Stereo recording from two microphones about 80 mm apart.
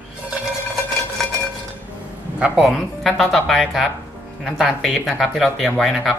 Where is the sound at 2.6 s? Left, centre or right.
Centre.